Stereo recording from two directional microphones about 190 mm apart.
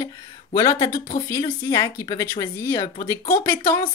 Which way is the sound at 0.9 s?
50° left (ahead or behind).